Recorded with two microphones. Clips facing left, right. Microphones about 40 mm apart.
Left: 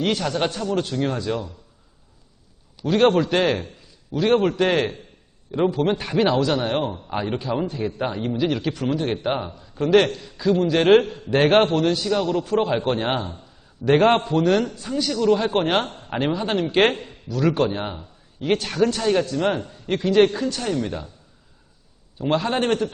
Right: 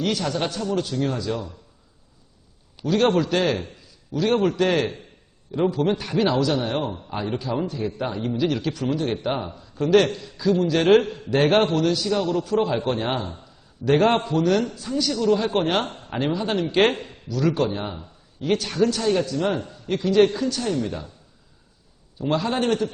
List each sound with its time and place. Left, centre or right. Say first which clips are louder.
0.2 s a man's voice: left 2 dB; centre
2.8 s a man's voice: left 2 dB; left
16.9 s speech: even; centre
17.2 s a man's voice: left 2 dB; left
22.2 s a man's voice: left 1 dB; centre